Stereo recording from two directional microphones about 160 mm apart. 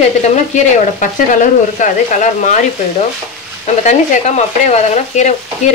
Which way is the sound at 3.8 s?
45° left (ahead or behind).